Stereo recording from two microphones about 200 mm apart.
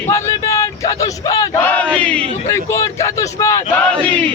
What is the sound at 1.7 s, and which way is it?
Battle cry, 5° left (ahead or behind).